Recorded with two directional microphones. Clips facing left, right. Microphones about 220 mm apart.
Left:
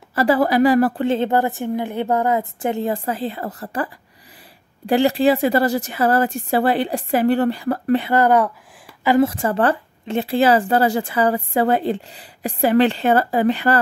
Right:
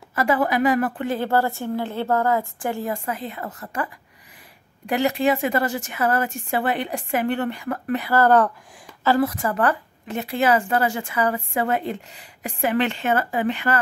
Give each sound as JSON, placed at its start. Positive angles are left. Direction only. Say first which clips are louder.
{"t": 0.1, "sound": "speech", "louder": "left 4 dB", "side_deg": 35}
{"t": 9.2, "sound": "speech", "louder": "left 4 dB", "side_deg": 30}